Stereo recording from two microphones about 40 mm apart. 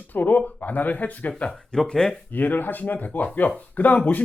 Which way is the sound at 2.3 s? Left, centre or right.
Left.